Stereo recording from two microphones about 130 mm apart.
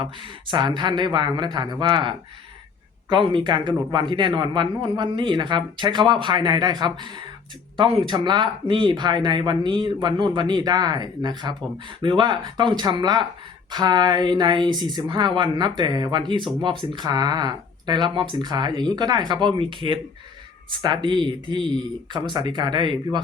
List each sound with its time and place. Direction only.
0.0 s speech: 40° right (ahead or behind)
16.4 s speech: centre (ahead or behind)
16.6 s speech: 40° right (ahead or behind)